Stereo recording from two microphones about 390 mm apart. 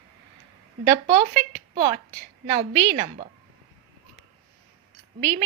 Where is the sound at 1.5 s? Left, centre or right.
Centre.